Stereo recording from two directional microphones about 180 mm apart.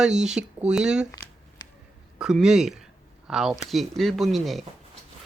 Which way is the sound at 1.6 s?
20° left (ahead or behind).